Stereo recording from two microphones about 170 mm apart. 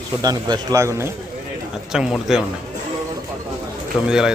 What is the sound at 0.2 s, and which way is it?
Speech, 25° right (ahead or behind).